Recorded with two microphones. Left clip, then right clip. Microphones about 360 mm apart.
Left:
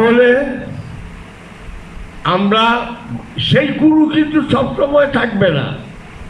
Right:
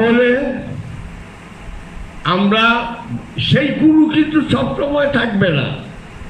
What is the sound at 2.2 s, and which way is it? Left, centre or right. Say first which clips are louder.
A man's voice: left 1 dB; centre.